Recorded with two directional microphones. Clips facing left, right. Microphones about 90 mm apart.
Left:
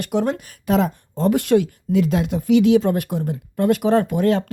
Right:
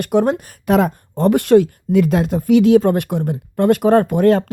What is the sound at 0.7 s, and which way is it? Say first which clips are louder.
A woman's voice: right 4 dB; 60° right (ahead or behind).